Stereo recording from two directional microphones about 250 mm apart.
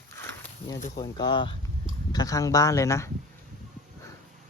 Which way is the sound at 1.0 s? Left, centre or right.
Centre.